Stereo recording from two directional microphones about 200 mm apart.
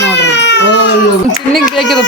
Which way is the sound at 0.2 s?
60° left (ahead or behind).